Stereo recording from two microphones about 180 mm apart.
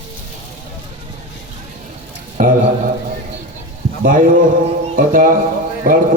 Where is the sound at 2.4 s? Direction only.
45° right (ahead or behind).